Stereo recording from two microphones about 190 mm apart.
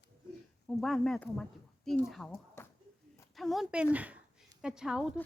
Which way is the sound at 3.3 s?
Centre (ahead or behind).